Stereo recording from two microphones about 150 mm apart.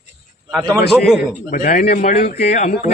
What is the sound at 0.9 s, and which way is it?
Speech, 5° right (ahead or behind).